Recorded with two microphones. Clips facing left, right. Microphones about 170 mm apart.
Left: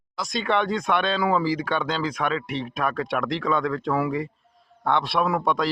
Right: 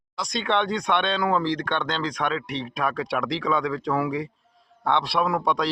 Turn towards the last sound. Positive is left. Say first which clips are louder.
# left 1 dB
turn(degrees=0)  # may be behind; listen again after turning